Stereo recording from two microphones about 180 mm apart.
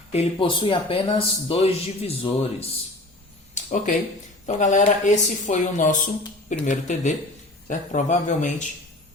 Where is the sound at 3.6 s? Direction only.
50° left (ahead or behind).